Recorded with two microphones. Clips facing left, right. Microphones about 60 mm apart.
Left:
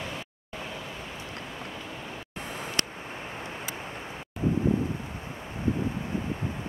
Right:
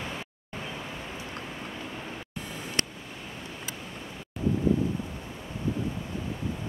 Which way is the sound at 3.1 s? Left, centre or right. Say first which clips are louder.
Left 3 dB; left.